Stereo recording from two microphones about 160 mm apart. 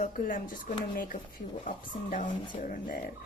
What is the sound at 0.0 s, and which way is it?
Speech, 55° left (ahead or behind).